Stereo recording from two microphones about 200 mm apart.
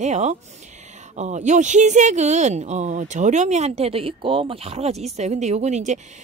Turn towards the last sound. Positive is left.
turn(degrees=-35)  # may be behind; listen again after turning